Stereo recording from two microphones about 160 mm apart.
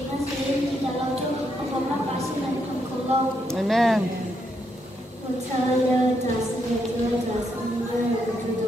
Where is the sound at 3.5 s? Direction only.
Centre (ahead or behind).